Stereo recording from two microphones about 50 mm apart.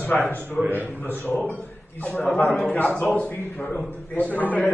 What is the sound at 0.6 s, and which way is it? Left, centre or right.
Speech, right.